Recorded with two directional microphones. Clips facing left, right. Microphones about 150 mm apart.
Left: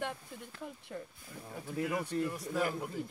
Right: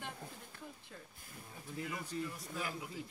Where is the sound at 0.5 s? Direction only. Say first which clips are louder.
Left 8 dB; 70° left (ahead or behind).